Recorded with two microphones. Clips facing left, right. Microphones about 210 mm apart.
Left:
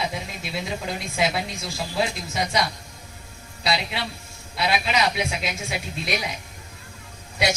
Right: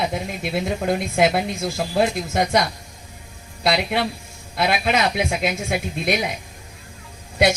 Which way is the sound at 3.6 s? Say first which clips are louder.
Right 6 dB; 55° right (ahead or behind).